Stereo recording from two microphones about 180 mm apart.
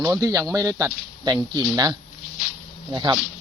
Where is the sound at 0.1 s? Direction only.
20° right (ahead or behind).